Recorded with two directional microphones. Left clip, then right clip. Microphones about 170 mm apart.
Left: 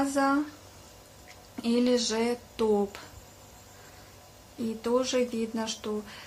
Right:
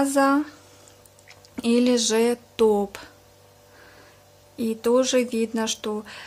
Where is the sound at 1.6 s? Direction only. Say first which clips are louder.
Right 5 dB; 45° right (ahead or behind).